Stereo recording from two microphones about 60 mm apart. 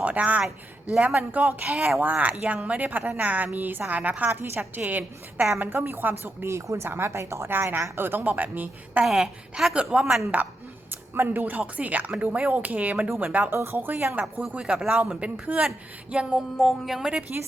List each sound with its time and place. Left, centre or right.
0.0 s a woman's voice: right
1.6 s speech: centre
2.0 s a woman's voice: right
4.3 s a woman's voice: right
4.9 s a woman's voice: right
6.5 s speech: right
7.4 s a woman's voice: right
9.0 s speech: centre
9.7 s a woman's voice: centre
11.1 s a woman's voice: right
14.5 s speech: centre
16.6 s speech: centre
17.0 s speech: centre